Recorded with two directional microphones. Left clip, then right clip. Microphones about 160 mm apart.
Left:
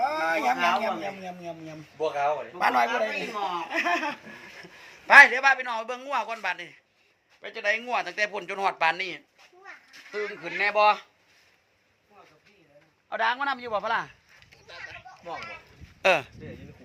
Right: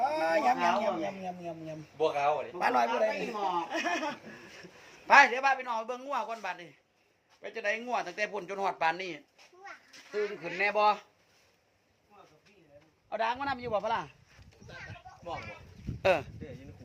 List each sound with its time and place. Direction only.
0.0 s speech: 20° left (ahead or behind)
2.0 s speech: 35° left (ahead or behind)
2.6 s a man's voice: 20° left (ahead or behind)
5.0 s speech: centre (ahead or behind)
7.4 s speech: 10° right (ahead or behind)
13.1 s speech: 10° right (ahead or behind)
16.0 s speech: 5° left (ahead or behind)